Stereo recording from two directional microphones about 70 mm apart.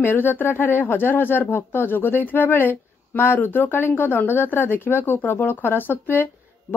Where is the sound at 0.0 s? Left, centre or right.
Left.